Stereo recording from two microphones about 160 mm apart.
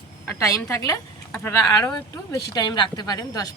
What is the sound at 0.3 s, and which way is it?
A woman's voice, 20° left (ahead or behind).